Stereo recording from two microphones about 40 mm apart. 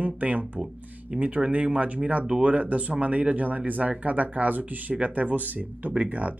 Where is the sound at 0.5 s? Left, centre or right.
Right.